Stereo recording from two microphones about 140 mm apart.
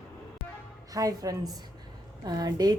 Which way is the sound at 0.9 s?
25° right (ahead or behind).